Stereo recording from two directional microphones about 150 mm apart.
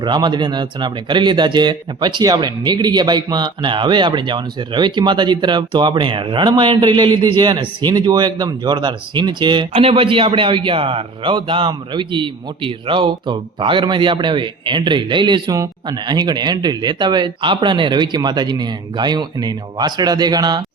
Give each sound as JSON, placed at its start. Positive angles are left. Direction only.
{"t": 0.0, "sound": "a man's voice", "side_deg": -30}
{"t": 9.7, "sound": "a man's voice", "side_deg": -40}